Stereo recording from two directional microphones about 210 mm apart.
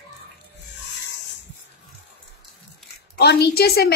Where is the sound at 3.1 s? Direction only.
50° left (ahead or behind).